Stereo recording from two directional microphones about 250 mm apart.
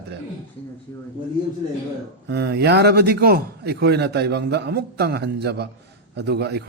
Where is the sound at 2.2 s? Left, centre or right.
Right.